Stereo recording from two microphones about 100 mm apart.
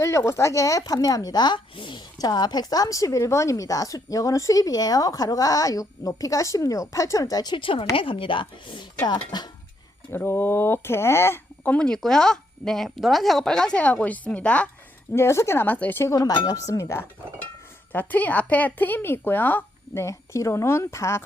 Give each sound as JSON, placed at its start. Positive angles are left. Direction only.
{"t": 0.0, "sound": "speech", "side_deg": 30}
{"t": 7.5, "sound": "speech", "side_deg": 60}
{"t": 10.1, "sound": "speech", "side_deg": 25}
{"t": 15.1, "sound": "a woman's voice", "side_deg": 25}
{"t": 17.9, "sound": "a woman's voice", "side_deg": 15}